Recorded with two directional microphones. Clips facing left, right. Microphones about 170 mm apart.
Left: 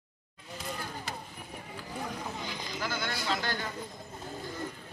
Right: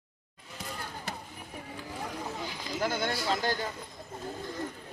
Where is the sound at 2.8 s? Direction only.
45° right (ahead or behind).